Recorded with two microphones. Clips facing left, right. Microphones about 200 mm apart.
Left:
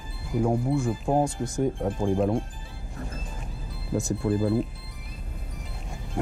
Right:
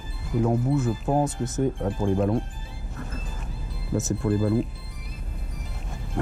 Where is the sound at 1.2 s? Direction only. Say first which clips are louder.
Right 1 dB; 5° right (ahead or behind).